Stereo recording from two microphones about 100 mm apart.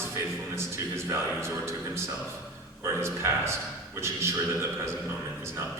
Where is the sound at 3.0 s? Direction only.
25° right (ahead or behind).